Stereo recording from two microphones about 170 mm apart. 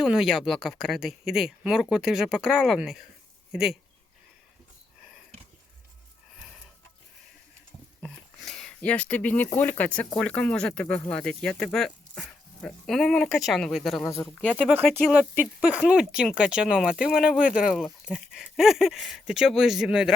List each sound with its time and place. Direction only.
0.0 s speech: 5° right (ahead or behind)
8.0 s a sound: centre (ahead or behind)
9.6 s speech: 10° left (ahead or behind)
14.0 s speech: 15° left (ahead or behind)
15.1 s speech: 10° right (ahead or behind)